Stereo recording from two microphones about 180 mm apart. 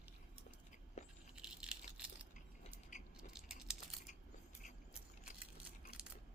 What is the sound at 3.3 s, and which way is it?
Crumpling, 5° right (ahead or behind).